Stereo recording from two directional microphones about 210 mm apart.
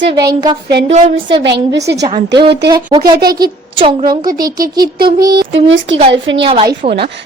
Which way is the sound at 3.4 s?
25° right (ahead or behind).